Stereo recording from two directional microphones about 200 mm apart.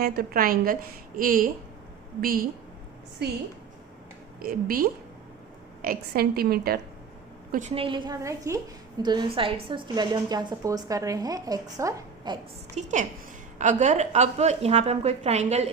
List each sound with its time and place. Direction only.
0.0 s a woman's voice: 50° right (ahead or behind)
4.4 s a woman's voice: 45° right (ahead or behind)
7.5 s a woman's voice: 35° right (ahead or behind)
12.7 s a woman's voice: 35° right (ahead or behind)